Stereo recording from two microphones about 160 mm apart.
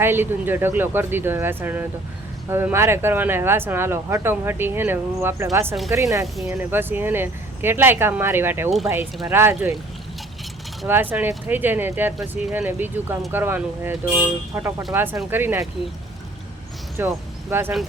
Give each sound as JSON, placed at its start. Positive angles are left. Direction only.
{"t": 0.0, "sound": "speech", "side_deg": -15}
{"t": 6.2, "sound": "speech", "side_deg": 0}
{"t": 6.5, "sound": "speech", "side_deg": -15}
{"t": 10.8, "sound": "speech", "side_deg": -10}
{"t": 17.0, "sound": "speech", "side_deg": -10}